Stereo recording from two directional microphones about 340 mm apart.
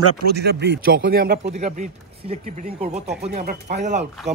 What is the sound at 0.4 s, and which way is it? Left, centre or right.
Speech, right.